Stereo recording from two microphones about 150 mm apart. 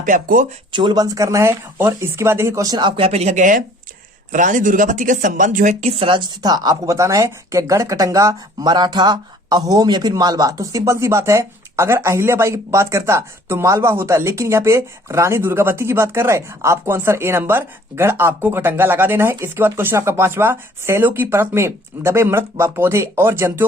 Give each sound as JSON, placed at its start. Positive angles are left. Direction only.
{"t": 0.0, "sound": "speech", "side_deg": -60}
{"t": 0.7, "sound": "speech", "side_deg": -30}
{"t": 6.0, "sound": "speech", "side_deg": -35}